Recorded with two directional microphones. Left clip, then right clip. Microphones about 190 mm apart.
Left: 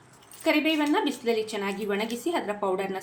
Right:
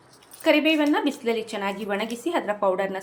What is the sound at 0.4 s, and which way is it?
A woman's voice, 20° right (ahead or behind).